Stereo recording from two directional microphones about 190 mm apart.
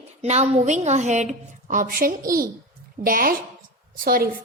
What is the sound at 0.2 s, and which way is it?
A woman's voice, 35° right (ahead or behind).